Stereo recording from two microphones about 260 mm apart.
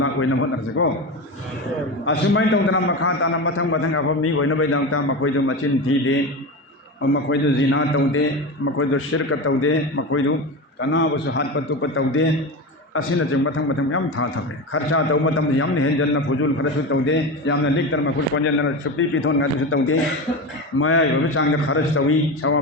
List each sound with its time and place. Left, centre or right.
0.0 s a sound: left
0.8 s a man's voice: left
2.0 s a man's voice: left
7.0 s a man's voice: left